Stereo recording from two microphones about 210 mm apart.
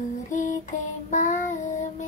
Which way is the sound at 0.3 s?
35° left (ahead or behind).